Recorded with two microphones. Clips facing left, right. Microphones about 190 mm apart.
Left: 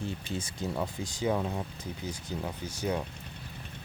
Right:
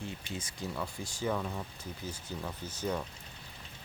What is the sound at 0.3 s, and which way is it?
Speech, 30° left (ahead or behind).